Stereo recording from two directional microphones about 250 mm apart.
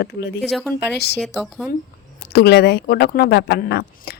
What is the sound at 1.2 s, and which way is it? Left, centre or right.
Speech, centre.